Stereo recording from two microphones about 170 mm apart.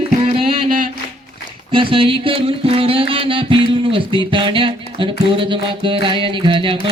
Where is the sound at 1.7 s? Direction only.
30° right (ahead or behind).